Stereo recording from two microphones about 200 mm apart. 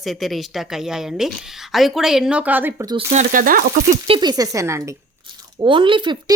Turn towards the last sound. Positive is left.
turn(degrees=-25)  # may be behind; listen again after turning